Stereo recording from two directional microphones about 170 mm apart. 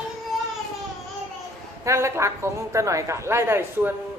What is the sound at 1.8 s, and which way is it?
A woman's voice, 15° right (ahead or behind).